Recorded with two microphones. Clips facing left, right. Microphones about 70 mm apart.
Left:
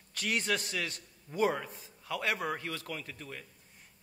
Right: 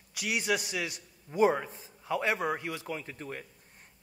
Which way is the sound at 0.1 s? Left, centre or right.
Centre.